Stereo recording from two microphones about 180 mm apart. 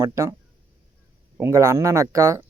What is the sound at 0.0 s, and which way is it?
Speech, 15° right (ahead or behind).